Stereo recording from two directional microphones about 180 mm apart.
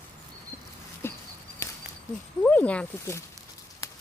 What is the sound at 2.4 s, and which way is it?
Speech, 5° left (ahead or behind).